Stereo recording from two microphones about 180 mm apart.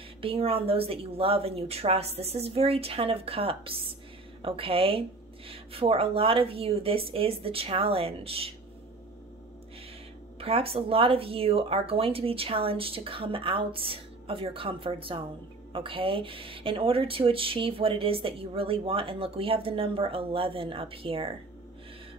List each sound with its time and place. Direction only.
0.2 s speech: 30° right (ahead or behind)
10.4 s speech: 30° right (ahead or behind)